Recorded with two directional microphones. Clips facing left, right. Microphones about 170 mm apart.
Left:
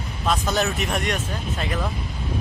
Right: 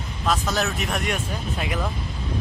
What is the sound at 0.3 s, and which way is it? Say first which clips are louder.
Speech: left 1 dB; centre (ahead or behind).